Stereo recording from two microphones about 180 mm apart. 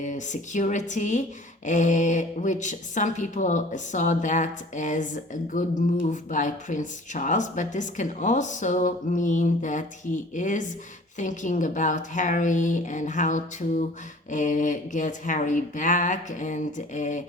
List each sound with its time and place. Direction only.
0.0 s speech: 45° left (ahead or behind)